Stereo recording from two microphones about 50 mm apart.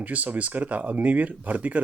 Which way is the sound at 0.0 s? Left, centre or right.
Right.